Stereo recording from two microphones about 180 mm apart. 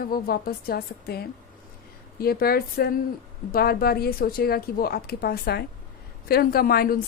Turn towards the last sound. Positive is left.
turn(degrees=55)  # may be behind; listen again after turning